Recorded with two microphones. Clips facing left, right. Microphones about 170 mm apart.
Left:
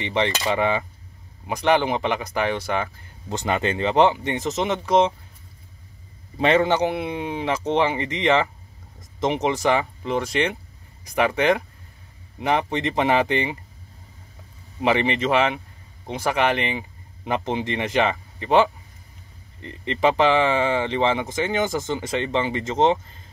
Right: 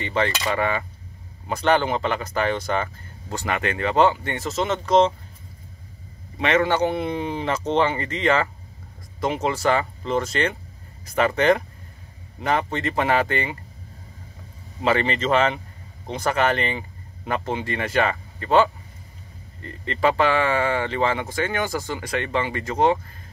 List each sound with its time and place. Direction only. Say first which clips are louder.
0.0 s speech: left 1 dB; 20° left (ahead or behind)
3.3 s speech: left 2 dB; 25° left (ahead or behind)
6.3 s a man's voice: left 2 dB; 30° left (ahead or behind)
6.6 s speech: even; 15° left (ahead or behind)
14.8 s speech: left 1 dB; 15° left (ahead or behind)